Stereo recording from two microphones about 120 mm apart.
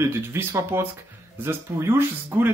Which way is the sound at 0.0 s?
20° right (ahead or behind).